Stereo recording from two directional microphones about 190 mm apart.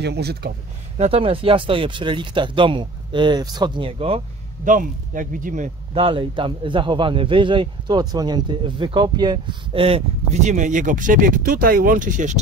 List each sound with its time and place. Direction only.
0.0 s speech: 60° right (ahead or behind)
0.9 s speech: 30° right (ahead or behind)
4.6 s speech: 45° right (ahead or behind)
6.0 s speech: 25° right (ahead or behind); by 12.4 s 40° right (ahead or behind)